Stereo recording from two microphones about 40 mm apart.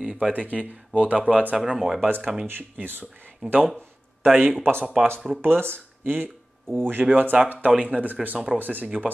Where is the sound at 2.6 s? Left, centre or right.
Right.